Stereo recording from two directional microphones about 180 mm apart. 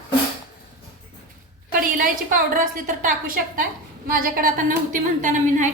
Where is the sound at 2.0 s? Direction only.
50° right (ahead or behind).